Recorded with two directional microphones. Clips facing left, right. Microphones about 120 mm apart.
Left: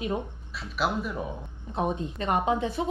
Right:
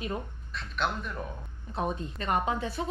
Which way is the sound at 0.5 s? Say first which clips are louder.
Left 3 dB; 5° left (ahead or behind).